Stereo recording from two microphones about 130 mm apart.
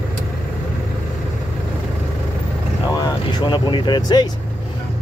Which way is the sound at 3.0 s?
35° left (ahead or behind).